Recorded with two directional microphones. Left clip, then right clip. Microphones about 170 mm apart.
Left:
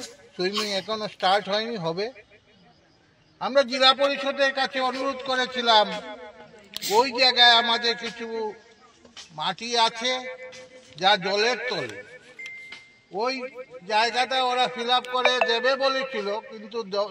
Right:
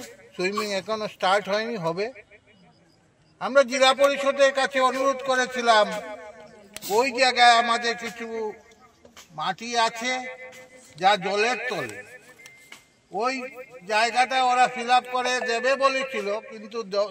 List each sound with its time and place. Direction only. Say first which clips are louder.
0.4 s a man's voice: even; 15° right (ahead or behind)
3.3 s a man's voice: right 2 dB; 15° right (ahead or behind)
13.1 s a man's voice: right 1 dB; 10° right (ahead or behind)